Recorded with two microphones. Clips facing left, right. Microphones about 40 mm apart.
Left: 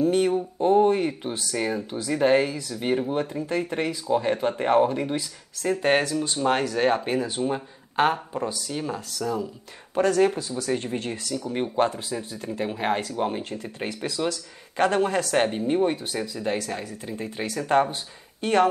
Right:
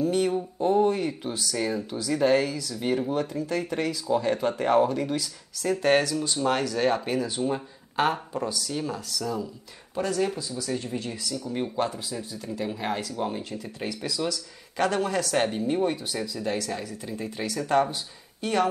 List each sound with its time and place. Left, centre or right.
0.0 s a sound: left
0.3 s speech: left
7.4 s speech: centre
8.5 s speech: left
9.9 s speech: left
15.3 s speech: left